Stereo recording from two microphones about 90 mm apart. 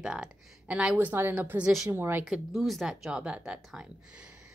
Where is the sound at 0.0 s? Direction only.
10° right (ahead or behind); by 2.2 s 25° right (ahead or behind).